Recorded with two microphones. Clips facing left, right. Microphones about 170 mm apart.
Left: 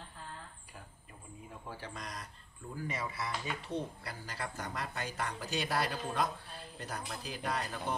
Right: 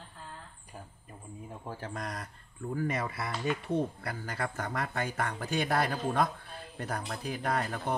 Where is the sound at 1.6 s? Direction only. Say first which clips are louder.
Right 6 dB; 45° right (ahead or behind).